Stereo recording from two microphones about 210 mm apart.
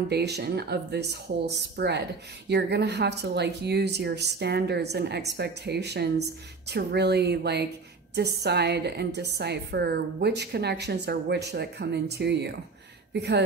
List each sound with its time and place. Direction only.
0.1 s a woman's voice: 50° right (ahead or behind)